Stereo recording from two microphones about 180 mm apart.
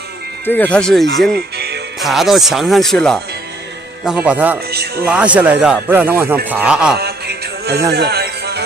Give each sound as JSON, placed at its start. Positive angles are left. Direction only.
{"t": 0.5, "sound": "speech", "side_deg": 10}
{"t": 1.3, "sound": "music", "side_deg": -65}
{"t": 2.0, "sound": "speech", "side_deg": 0}
{"t": 4.6, "sound": "speech", "side_deg": -60}
{"t": 5.0, "sound": "speech", "side_deg": -5}
{"t": 7.0, "sound": "music", "side_deg": -65}